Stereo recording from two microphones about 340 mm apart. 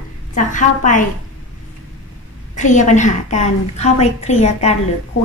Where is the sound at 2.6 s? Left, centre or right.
Left.